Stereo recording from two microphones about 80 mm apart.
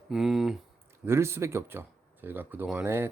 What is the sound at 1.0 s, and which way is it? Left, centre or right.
Speech, right.